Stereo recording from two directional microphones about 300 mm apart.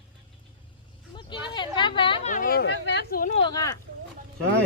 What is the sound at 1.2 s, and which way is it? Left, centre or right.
A man's voice, centre.